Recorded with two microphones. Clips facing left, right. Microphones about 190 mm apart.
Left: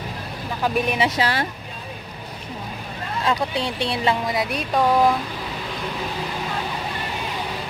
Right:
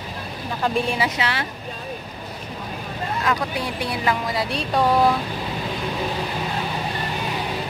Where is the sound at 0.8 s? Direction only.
25° left (ahead or behind).